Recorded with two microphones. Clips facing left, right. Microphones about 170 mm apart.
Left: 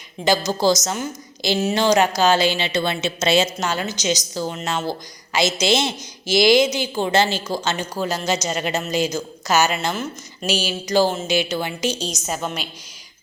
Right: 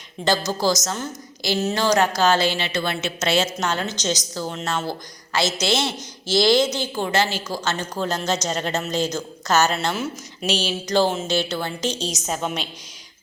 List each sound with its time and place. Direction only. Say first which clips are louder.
0.3 s a woman's voice: left 3 dB; 20° left (ahead or behind)
7.9 s a woman's voice: left 1 dB; 10° left (ahead or behind)